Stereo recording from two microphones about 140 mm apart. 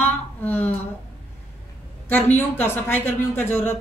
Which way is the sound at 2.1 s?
15° left (ahead or behind).